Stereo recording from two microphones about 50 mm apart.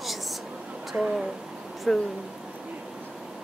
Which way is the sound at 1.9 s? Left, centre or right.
Centre.